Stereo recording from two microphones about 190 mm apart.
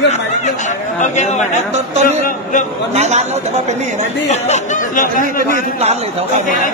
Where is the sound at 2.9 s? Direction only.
35° right (ahead or behind).